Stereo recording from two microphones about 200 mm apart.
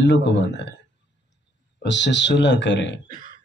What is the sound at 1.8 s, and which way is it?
Speech, 65° left (ahead or behind).